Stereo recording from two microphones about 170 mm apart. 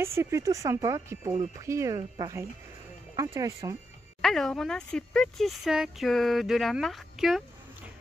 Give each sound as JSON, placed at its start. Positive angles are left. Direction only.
{"t": 0.0, "sound": "speech", "side_deg": -15}
{"t": 4.2, "sound": "speech", "side_deg": 5}